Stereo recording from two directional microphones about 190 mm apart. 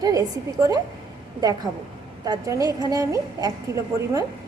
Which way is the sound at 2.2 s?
20° right (ahead or behind).